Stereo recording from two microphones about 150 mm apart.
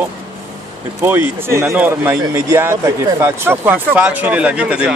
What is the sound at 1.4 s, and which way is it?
Speech, 15° right (ahead or behind).